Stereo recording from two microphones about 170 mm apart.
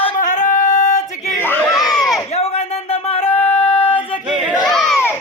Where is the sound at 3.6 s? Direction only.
30° left (ahead or behind).